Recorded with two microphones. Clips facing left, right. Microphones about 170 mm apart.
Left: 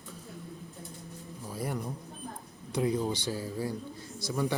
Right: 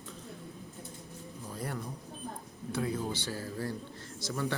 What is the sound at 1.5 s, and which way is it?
Speech, 15° left (ahead or behind).